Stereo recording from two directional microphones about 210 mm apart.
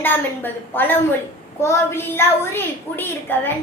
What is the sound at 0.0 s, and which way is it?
A woman's voice, 10° left (ahead or behind).